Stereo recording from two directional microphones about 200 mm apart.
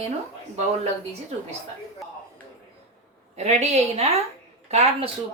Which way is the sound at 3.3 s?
35° right (ahead or behind).